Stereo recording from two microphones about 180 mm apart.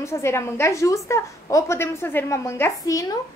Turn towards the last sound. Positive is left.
turn(degrees=20)  # may be behind; listen again after turning